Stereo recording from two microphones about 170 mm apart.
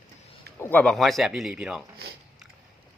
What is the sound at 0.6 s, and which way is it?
Speech, 10° left (ahead or behind).